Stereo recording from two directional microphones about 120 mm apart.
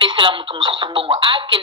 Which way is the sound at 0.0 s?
45° right (ahead or behind).